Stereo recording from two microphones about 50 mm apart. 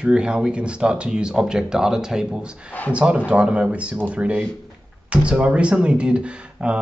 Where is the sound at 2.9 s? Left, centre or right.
Right.